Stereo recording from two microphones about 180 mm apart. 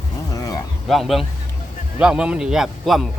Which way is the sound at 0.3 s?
20° left (ahead or behind).